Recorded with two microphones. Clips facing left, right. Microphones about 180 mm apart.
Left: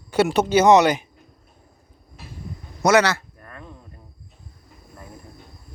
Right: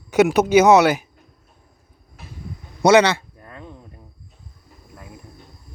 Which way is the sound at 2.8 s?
30° right (ahead or behind).